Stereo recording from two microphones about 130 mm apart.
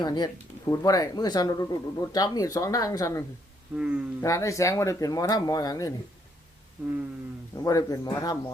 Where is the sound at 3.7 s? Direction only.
10° right (ahead or behind).